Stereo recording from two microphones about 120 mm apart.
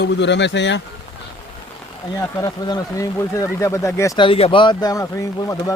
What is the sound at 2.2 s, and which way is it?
Speech, 25° left (ahead or behind).